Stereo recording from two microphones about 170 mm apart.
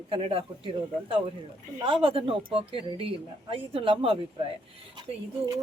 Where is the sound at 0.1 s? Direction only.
35° right (ahead or behind).